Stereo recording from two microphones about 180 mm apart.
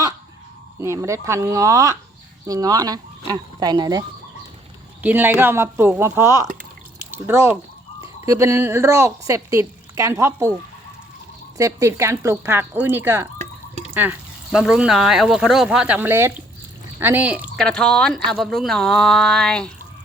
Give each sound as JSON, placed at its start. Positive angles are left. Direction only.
{"t": 0.8, "sound": "speech", "side_deg": -15}
{"t": 5.0, "sound": "speech", "side_deg": -10}
{"t": 11.5, "sound": "speech", "side_deg": -20}
{"t": 13.4, "sound": "drip", "side_deg": -40}
{"t": 13.9, "sound": "speech", "side_deg": -10}
{"t": 17.6, "sound": "speech", "side_deg": 5}